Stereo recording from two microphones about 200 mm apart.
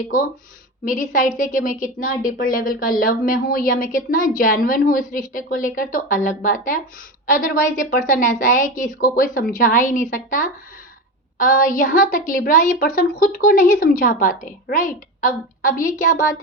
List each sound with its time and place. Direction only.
0.9 s a woman's voice: 40° left (ahead or behind)
11.3 s a woman's voice: 45° left (ahead or behind)